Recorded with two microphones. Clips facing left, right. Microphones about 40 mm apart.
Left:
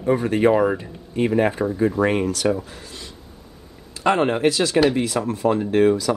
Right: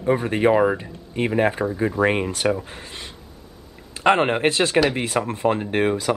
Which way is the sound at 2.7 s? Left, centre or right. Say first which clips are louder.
Right 2 dB; right.